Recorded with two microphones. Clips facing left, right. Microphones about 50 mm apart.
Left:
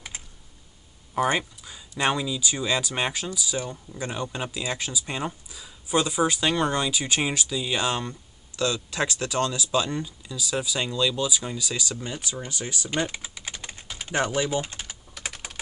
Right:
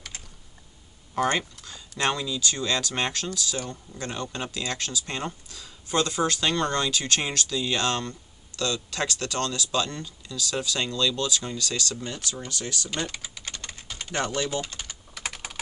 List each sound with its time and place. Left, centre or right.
1.1 s speech: centre
13.3 s typing: centre
14.0 s speech: centre
14.8 s typing: centre